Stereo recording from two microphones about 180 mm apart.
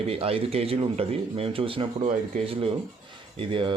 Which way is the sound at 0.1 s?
30° right (ahead or behind).